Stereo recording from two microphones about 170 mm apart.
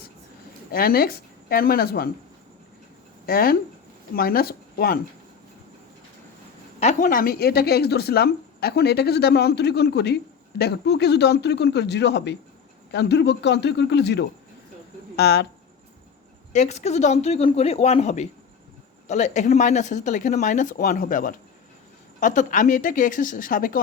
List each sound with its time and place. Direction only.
0.7 s speech: 60° left (ahead or behind)
3.2 s speech: 60° left (ahead or behind)
6.7 s a woman's voice: 45° left (ahead or behind); by 15.4 s 75° left (ahead or behind)
16.5 s speech: 45° left (ahead or behind)